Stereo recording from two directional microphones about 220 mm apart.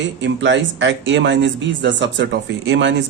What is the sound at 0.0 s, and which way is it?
Speech, 55° right (ahead or behind).